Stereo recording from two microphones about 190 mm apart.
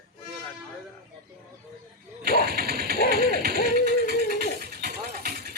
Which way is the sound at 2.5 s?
50° right (ahead or behind).